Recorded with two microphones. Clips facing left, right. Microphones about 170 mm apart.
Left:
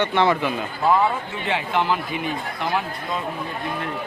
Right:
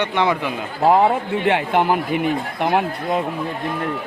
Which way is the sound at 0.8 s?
60° right (ahead or behind).